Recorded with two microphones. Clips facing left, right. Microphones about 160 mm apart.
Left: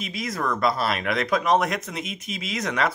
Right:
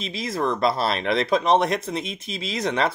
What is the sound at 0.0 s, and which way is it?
Speech, 30° right (ahead or behind).